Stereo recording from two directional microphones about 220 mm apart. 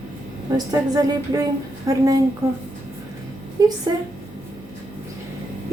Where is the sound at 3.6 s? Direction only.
15° right (ahead or behind).